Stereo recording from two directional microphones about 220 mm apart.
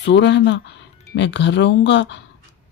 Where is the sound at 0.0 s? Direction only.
55° left (ahead or behind).